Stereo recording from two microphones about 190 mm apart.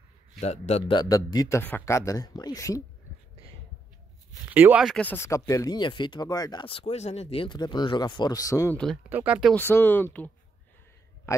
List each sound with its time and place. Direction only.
0.4 s a man's voice: 35° left (ahead or behind)
0.9 s speech: 20° left (ahead or behind)
4.5 s speech: 10° right (ahead or behind); by 8.7 s 15° left (ahead or behind)
8.7 s speech: 5° left (ahead or behind)
9.6 s a man's voice: 10° left (ahead or behind)